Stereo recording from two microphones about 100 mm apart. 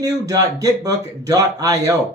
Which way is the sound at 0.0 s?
35° right (ahead or behind).